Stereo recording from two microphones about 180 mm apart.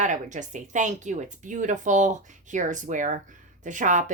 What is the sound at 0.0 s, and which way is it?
Speech, 45° right (ahead or behind).